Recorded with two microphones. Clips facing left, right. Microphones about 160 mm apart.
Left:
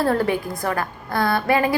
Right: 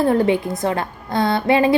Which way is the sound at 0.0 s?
20° right (ahead or behind).